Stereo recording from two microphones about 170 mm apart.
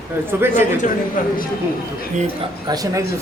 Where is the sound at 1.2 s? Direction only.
50° left (ahead or behind).